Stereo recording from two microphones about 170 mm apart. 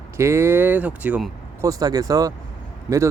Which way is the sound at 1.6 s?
20° right (ahead or behind).